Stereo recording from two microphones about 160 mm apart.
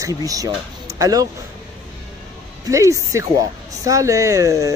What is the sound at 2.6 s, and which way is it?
Speech, 20° right (ahead or behind).